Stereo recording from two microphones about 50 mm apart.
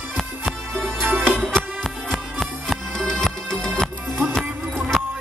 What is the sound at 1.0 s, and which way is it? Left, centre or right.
Music, right.